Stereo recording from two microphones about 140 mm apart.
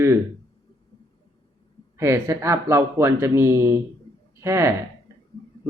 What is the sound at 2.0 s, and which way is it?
Speech, 20° right (ahead or behind).